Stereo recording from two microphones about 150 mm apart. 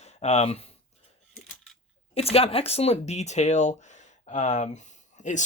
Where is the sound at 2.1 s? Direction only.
40° left (ahead or behind).